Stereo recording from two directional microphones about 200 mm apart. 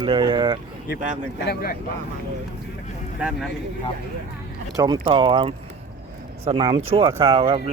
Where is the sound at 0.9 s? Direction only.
40° right (ahead or behind).